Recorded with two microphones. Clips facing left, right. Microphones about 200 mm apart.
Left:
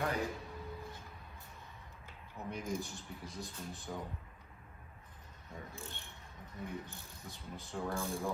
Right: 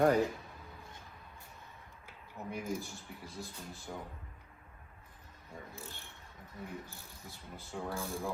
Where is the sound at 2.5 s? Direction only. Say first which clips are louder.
Right 1 dB; centre (ahead or behind).